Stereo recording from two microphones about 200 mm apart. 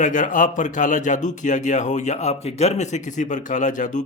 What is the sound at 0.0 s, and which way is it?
Speech, 40° left (ahead or behind).